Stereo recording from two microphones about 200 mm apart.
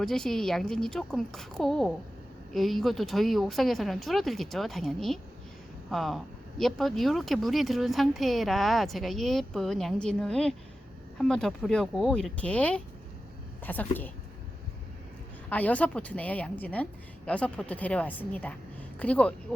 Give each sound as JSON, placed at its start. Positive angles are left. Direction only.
{"t": 0.0, "sound": "a woman's voice", "side_deg": 0}
{"t": 15.4, "sound": "a woman's voice", "side_deg": 10}